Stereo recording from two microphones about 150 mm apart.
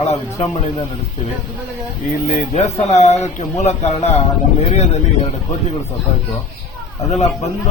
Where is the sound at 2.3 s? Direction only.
50° left (ahead or behind).